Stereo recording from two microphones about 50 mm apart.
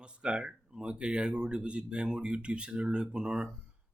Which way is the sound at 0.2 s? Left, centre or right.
Centre.